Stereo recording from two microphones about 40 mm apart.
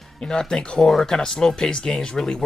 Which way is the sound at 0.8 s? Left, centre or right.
Centre.